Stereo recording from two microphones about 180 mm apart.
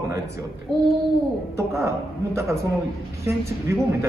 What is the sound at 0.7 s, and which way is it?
Speech, centre (ahead or behind).